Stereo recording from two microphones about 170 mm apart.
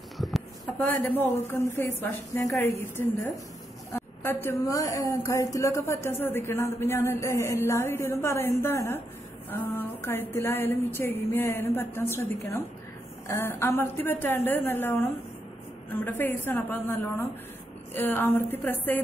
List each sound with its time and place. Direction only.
0.7 s a woman's voice: 10° left (ahead or behind)